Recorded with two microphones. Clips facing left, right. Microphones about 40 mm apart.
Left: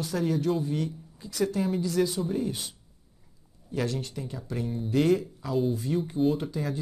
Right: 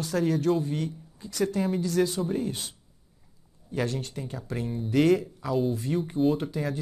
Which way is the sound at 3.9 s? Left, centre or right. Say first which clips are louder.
Even; right.